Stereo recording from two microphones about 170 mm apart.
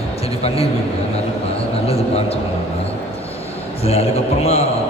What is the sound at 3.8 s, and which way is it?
Speech, 35° left (ahead or behind).